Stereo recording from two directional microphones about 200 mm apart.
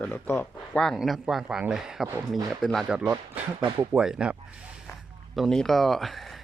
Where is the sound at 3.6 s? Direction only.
25° right (ahead or behind).